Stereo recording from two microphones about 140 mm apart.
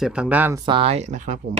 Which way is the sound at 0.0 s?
5° right (ahead or behind).